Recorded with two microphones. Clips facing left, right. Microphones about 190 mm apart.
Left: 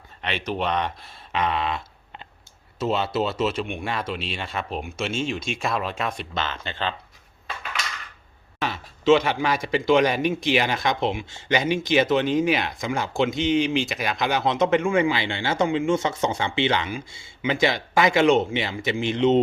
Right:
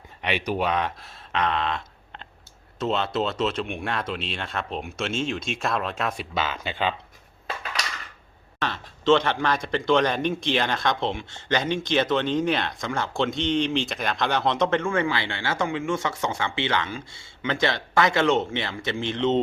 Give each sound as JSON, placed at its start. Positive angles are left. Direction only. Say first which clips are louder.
{"t": 0.2, "sound": "speech", "louder": "right 2 dB", "side_deg": -10}
{"t": 8.6, "sound": "a man's voice", "louder": "left 2 dB", "side_deg": 10}